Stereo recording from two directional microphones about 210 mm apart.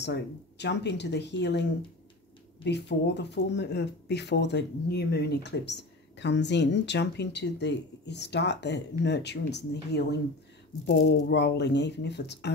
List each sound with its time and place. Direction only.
0.0 s speech: 55° left (ahead or behind)